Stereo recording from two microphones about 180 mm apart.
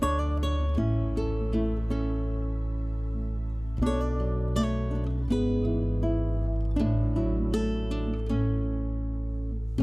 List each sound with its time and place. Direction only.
0.0 s music: centre (ahead or behind)
3.8 s music: centre (ahead or behind)